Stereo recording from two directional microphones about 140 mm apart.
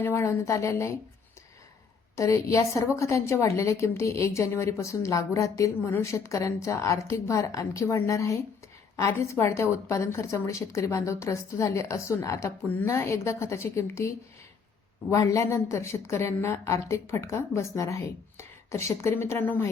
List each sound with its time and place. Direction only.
0.0 s a woman's voice: 20° left (ahead or behind)
2.1 s a woman's voice: 20° left (ahead or behind)